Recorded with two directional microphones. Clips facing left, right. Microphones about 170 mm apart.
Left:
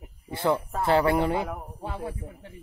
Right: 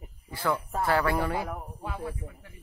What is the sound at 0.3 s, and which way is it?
A woman's voice, 25° left (ahead or behind).